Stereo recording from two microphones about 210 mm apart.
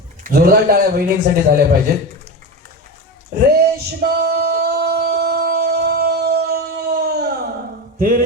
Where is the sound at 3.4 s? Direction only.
50° right (ahead or behind).